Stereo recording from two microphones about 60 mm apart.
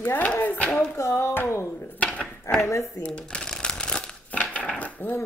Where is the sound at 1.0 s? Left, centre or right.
Left.